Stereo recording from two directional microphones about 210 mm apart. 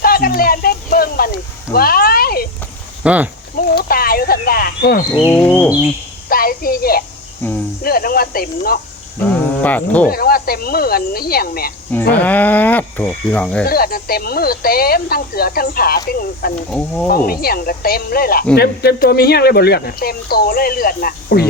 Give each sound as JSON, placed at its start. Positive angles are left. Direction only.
{"t": 0.0, "sound": "a sound", "side_deg": 45}
{"t": 3.0, "sound": "speech", "side_deg": -5}
{"t": 3.8, "sound": "a sound", "side_deg": 45}
{"t": 5.3, "sound": "speech", "side_deg": 10}
{"t": 6.2, "sound": "a woman's voice", "side_deg": 45}
{"t": 7.4, "sound": "speech", "side_deg": 10}
{"t": 7.9, "sound": "speech", "side_deg": 45}
{"t": 9.2, "sound": "speech", "side_deg": 5}
{"t": 10.1, "sound": "speech", "side_deg": 45}
{"t": 12.1, "sound": "speech", "side_deg": 10}
{"t": 13.7, "sound": "speech", "side_deg": 45}
{"t": 16.7, "sound": "speech", "side_deg": 5}
{"t": 17.1, "sound": "speech", "side_deg": 45}